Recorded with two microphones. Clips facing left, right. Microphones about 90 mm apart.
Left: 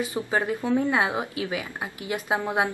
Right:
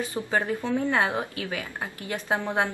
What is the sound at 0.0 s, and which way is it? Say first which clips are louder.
Speech: left 1 dB; 15° left (ahead or behind).